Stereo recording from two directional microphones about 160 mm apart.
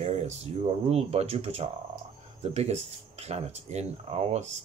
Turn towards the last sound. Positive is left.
turn(degrees=-45)  # may be behind; listen again after turning